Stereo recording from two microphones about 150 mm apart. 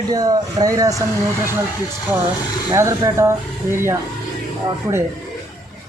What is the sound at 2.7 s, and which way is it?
Speech, 20° right (ahead or behind).